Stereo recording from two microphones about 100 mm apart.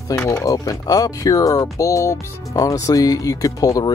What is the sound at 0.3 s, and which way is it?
Speech, 35° left (ahead or behind).